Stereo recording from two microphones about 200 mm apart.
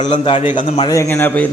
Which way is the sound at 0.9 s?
10° left (ahead or behind).